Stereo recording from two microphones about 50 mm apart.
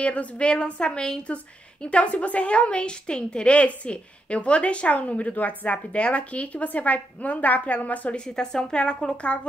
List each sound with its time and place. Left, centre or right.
0.0 s a woman's voice: left
8.4 s a woman's voice: centre